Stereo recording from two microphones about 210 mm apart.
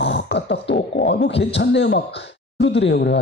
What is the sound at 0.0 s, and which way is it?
Throat clearing, 55° left (ahead or behind).